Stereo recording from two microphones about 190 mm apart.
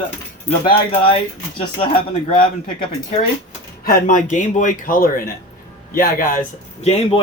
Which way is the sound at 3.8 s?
45° left (ahead or behind).